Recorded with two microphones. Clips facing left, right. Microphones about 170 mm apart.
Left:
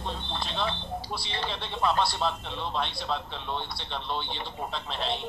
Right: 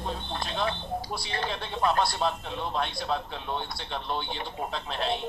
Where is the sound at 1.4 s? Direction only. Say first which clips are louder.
Right 1 dB; centre (ahead or behind).